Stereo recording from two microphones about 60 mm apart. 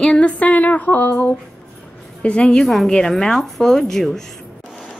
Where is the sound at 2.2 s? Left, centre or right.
Centre.